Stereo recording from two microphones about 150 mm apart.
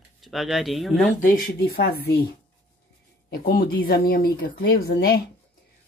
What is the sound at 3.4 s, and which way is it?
Speech, 85° left.